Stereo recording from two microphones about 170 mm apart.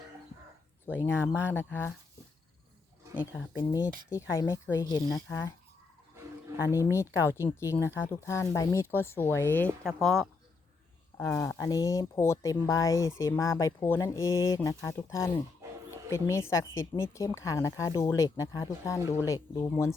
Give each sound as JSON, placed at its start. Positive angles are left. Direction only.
{"t": 0.9, "sound": "a woman's voice", "side_deg": 15}
{"t": 3.3, "sound": "a woman's voice", "side_deg": 20}
{"t": 6.7, "sound": "a woman's voice", "side_deg": 15}
{"t": 11.2, "sound": "a woman's voice", "side_deg": 15}